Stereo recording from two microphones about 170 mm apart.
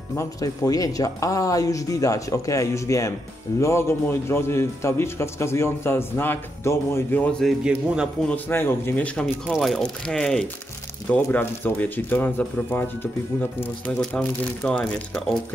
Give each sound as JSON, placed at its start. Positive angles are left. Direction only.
{"t": 0.1, "sound": "a man's voice", "side_deg": 15}
{"t": 8.3, "sound": "a man's voice", "side_deg": 15}